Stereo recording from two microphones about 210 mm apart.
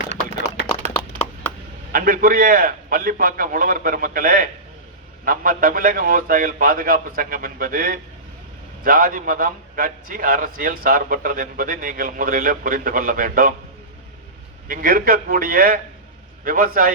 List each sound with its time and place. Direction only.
1.9 s a man's voice: 40° right (ahead or behind)
14.7 s a man's voice: 40° right (ahead or behind)